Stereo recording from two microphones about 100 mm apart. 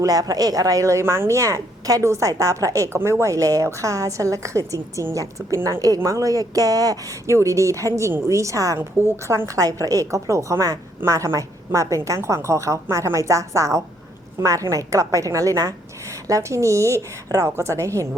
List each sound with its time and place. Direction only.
0.0 s a woman's voice: 40° right (ahead or behind)